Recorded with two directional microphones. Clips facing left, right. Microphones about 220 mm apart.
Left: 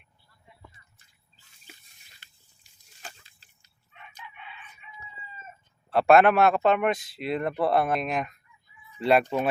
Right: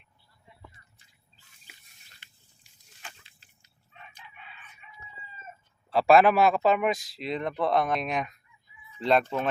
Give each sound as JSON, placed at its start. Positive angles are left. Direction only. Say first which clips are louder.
{"t": 3.0, "sound": "a sound", "louder": "left 3 dB", "side_deg": 40}
{"t": 4.2, "sound": "crowing", "louder": "left 5 dB", "side_deg": -35}
{"t": 5.9, "sound": "a man's voice", "louder": "left 1 dB", "side_deg": 0}